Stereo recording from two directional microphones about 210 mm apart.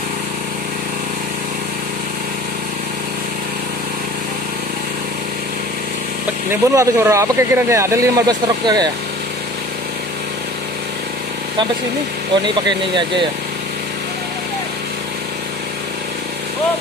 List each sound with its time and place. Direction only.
6.5 s speech: 15° right (ahead or behind)
12.6 s speech: 20° right (ahead or behind)